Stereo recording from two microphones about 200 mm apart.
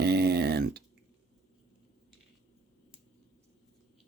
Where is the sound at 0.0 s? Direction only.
55° right (ahead or behind).